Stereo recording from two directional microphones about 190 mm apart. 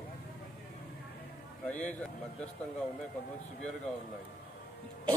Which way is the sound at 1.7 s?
5° left (ahead or behind).